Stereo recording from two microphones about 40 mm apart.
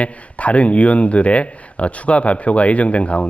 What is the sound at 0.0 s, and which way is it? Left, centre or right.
Speech, left.